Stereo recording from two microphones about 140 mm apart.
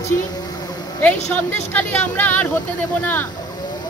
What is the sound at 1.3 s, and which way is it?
Speech, 10° left (ahead or behind).